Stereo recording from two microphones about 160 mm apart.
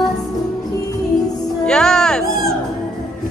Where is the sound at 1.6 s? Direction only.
5° left (ahead or behind).